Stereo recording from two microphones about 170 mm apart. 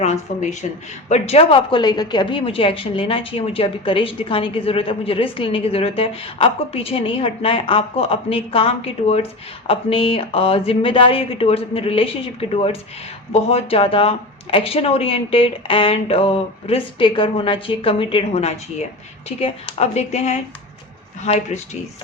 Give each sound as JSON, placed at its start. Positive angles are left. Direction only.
{"t": 0.0, "sound": "a woman's voice", "side_deg": 40}